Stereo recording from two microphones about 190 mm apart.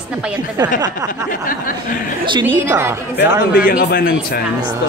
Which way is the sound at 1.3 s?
45° left (ahead or behind).